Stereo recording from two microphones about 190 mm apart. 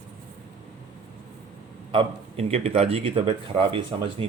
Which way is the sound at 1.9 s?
30° right (ahead or behind).